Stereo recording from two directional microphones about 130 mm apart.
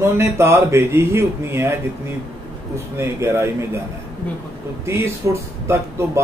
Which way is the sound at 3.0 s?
20° right (ahead or behind).